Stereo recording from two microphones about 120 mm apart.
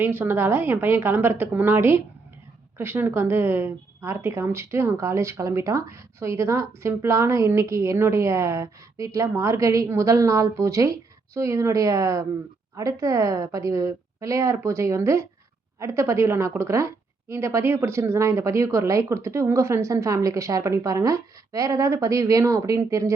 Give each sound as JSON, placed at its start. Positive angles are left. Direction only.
{"t": 0.0, "sound": "a woman's voice", "side_deg": -15}